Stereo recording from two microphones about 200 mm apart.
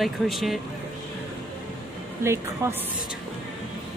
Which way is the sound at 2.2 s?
15° right (ahead or behind).